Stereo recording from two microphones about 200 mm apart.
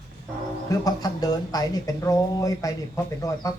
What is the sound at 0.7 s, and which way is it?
Speech, 20° left (ahead or behind).